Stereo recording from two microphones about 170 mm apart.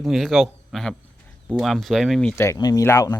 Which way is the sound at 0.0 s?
Centre (ahead or behind).